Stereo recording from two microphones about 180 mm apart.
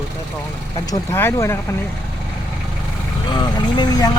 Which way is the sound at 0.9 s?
15° left (ahead or behind).